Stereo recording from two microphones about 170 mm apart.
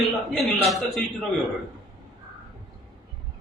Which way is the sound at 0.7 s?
Centre (ahead or behind).